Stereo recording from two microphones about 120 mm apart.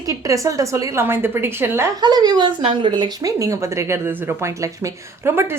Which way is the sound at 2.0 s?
35° right (ahead or behind).